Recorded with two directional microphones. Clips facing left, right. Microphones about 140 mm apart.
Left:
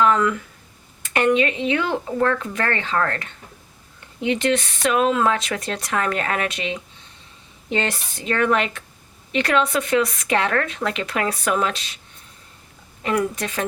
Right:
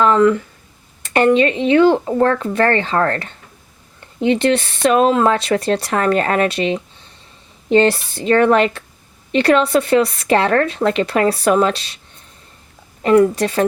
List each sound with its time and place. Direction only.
0.0 s a sound: 35° right (ahead or behind)
1.0 s speech: 35° right (ahead or behind)
13.0 s speech: 35° right (ahead or behind)